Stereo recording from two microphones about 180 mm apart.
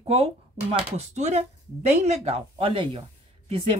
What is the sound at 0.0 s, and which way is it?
A woman's voice, 35° right (ahead or behind).